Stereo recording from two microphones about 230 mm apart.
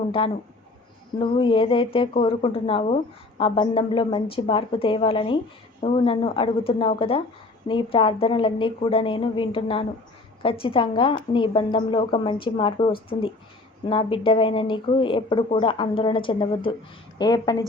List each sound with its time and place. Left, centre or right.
0.2 s speech: left